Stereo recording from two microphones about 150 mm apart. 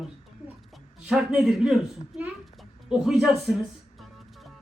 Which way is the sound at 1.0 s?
5° right (ahead or behind).